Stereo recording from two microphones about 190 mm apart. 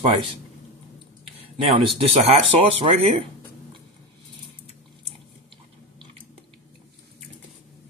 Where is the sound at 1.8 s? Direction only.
30° right (ahead or behind).